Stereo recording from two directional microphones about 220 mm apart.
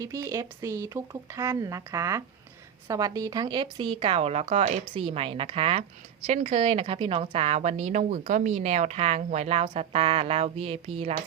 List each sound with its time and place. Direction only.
0.0 s a woman's voice: 15° right (ahead or behind)